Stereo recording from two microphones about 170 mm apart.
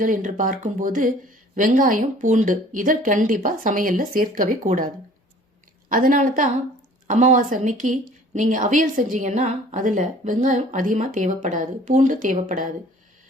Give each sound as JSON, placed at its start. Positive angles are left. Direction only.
{"t": 0.0, "sound": "speech", "side_deg": -50}
{"t": 5.9, "sound": "speech", "side_deg": -55}